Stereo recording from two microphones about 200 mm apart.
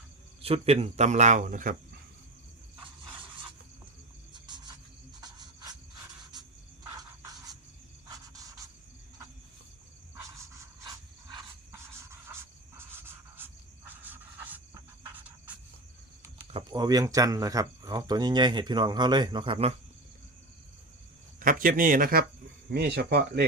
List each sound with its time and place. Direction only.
0.4 s speech: 30° right (ahead or behind)
4.4 s cricket: 20° right (ahead or behind)
6.9 s a sound: 20° right (ahead or behind)
8.0 s insect: 15° right (ahead or behind)
10.2 s pant: 15° right (ahead or behind)
16.5 s speech: 25° right (ahead or behind)
21.3 s speech: 45° right (ahead or behind)